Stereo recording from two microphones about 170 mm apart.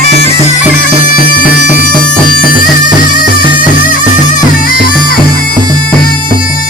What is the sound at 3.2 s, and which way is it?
Music, 55° left (ahead or behind).